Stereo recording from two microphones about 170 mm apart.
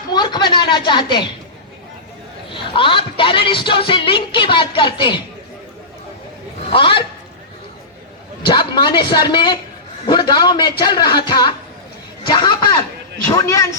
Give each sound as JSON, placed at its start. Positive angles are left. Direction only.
{"t": 0.1, "sound": "a sound", "side_deg": 25}
{"t": 2.5, "sound": "speech", "side_deg": 30}
{"t": 6.7, "sound": "speech", "side_deg": 30}
{"t": 8.4, "sound": "speech", "side_deg": 25}